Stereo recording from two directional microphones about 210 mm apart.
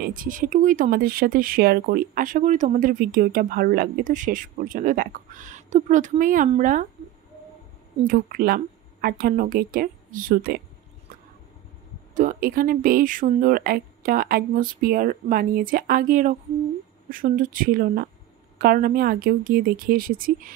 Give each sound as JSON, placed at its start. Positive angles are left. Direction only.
{"t": 0.0, "sound": "speech", "side_deg": -40}
{"t": 8.1, "sound": "speech", "side_deg": -45}
{"t": 12.1, "sound": "speech", "side_deg": -40}